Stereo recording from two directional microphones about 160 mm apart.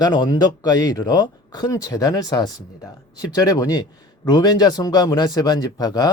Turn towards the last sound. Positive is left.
turn(degrees=25)  # may be behind; listen again after turning